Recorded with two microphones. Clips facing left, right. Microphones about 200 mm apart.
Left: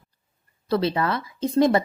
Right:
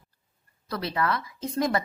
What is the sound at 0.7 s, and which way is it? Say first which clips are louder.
Speech: left 6 dB; 25° left (ahead or behind).